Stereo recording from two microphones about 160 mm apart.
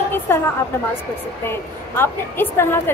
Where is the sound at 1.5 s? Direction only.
15° left (ahead or behind).